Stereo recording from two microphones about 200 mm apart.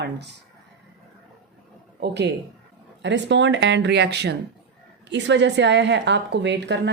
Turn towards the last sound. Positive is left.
turn(degrees=-60)  # may be behind; listen again after turning